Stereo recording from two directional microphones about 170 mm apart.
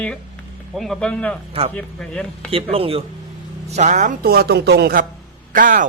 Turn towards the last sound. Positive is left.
turn(degrees=-55)  # may be behind; listen again after turning